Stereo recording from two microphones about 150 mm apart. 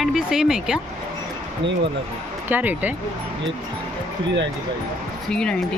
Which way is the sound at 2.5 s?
10° right (ahead or behind).